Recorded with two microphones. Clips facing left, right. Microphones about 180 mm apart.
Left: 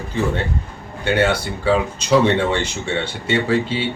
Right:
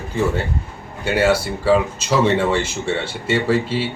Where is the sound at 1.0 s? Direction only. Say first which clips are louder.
Right 1 dB; 5° right (ahead or behind).